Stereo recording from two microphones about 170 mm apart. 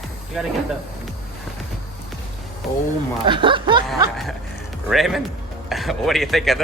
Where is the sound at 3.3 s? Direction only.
30° right (ahead or behind).